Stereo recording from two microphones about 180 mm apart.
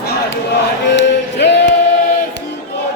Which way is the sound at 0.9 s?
75° left (ahead or behind).